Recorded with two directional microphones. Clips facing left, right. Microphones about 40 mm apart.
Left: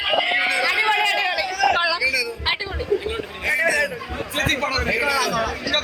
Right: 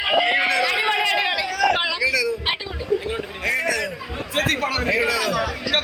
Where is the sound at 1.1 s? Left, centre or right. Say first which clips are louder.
Even; right.